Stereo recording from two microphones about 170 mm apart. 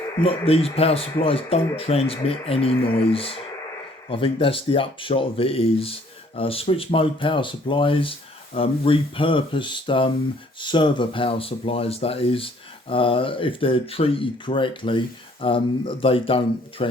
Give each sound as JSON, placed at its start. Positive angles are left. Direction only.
{"t": 0.2, "sound": "speech", "side_deg": 35}